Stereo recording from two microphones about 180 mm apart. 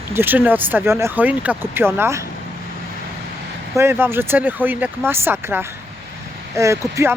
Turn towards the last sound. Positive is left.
turn(degrees=-15)  # may be behind; listen again after turning